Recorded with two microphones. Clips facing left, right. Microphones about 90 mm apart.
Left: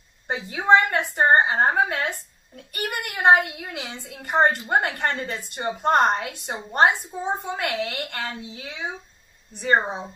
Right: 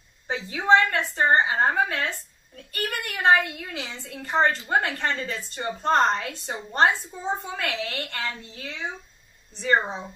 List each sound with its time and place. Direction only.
0.3 s a woman's voice: 10° left (ahead or behind)